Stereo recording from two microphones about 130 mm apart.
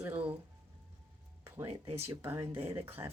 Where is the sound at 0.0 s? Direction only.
15° right (ahead or behind).